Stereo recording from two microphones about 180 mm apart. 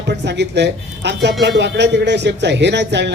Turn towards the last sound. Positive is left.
turn(degrees=-75)  # may be behind; listen again after turning